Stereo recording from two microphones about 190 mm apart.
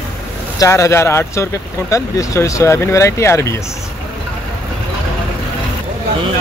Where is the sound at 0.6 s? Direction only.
15° left (ahead or behind).